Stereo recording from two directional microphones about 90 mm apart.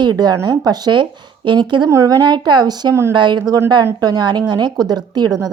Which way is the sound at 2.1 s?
50° right (ahead or behind).